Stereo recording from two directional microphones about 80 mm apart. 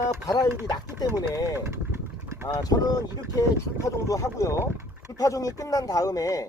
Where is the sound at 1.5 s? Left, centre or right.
Right.